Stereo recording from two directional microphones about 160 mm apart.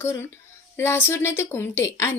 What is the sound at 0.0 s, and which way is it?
Speech, 15° left (ahead or behind).